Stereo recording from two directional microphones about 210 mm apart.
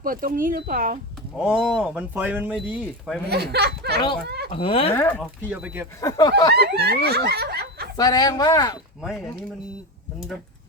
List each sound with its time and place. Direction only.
0.0 s speech: 40° right (ahead or behind)
1.4 s speech: centre (ahead or behind)
3.2 s speech: 50° right (ahead or behind)
4.5 s speech: 25° left (ahead or behind)
4.9 s speech: 10° left (ahead or behind)
5.4 s speech: 10° right (ahead or behind)
6.0 s speech: 15° left (ahead or behind)
6.5 s snicker: 50° right (ahead or behind)
7.9 s speech: 20° left (ahead or behind)
9.0 s speech: centre (ahead or behind)